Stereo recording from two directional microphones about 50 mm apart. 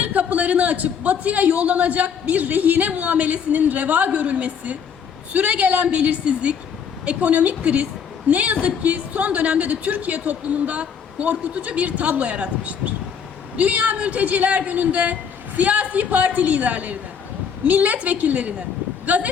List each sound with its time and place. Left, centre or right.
0.0 s a man's voice: right